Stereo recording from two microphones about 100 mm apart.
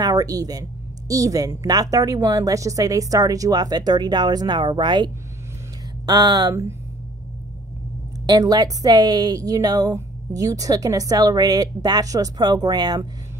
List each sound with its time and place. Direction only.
0.0 s a woman's voice: 40° right (ahead or behind)
8.3 s a woman's voice: 40° right (ahead or behind)